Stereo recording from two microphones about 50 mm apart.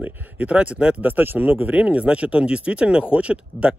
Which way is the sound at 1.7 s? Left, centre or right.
Right.